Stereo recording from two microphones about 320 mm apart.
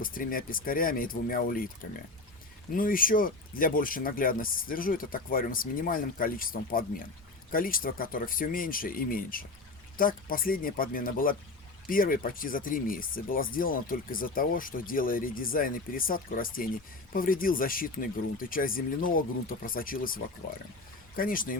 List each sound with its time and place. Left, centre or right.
0.0 s speech: left
2.7 s speech: left